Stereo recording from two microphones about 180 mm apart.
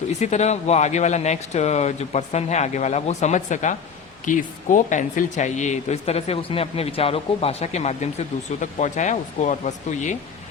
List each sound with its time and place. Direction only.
0.1 s speech: 40° left (ahead or behind)